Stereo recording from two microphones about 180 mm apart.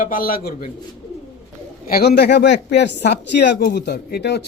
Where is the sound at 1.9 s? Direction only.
60° left (ahead or behind).